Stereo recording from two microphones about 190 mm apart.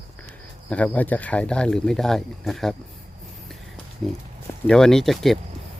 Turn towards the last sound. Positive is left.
turn(degrees=0)  # may be behind; listen again after turning